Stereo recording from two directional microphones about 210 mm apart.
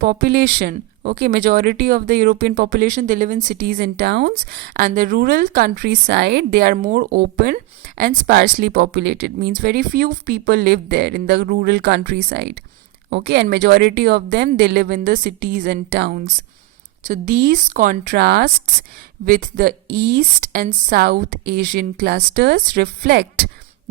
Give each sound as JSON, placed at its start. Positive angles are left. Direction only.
{"t": 0.0, "sound": "speech", "side_deg": -45}
{"t": 17.0, "sound": "speech", "side_deg": -40}